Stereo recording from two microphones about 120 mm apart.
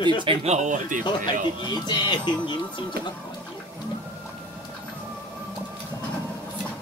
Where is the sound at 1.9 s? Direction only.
40° left (ahead or behind).